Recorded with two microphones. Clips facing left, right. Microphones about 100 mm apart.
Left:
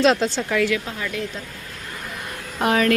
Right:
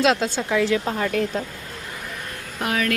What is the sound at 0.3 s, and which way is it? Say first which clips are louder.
Speech: right 1 dB; 15° right (ahead or behind).